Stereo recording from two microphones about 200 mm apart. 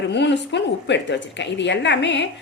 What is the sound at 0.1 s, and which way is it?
A woman's voice, 60° left (ahead or behind).